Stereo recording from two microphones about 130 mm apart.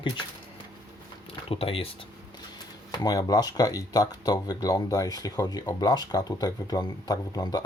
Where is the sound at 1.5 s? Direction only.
45° left (ahead or behind).